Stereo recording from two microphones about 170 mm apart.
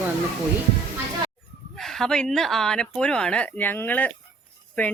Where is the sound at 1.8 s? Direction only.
Centre (ahead or behind).